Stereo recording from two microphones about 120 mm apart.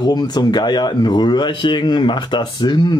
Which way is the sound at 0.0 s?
35° left (ahead or behind).